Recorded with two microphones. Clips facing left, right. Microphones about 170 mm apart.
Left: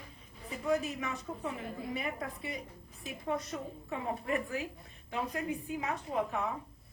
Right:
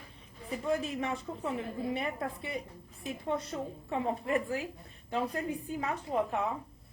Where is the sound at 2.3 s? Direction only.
30° right (ahead or behind).